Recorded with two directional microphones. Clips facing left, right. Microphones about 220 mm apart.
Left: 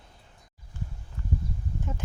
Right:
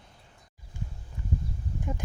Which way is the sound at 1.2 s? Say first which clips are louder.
Even; 15° right (ahead or behind).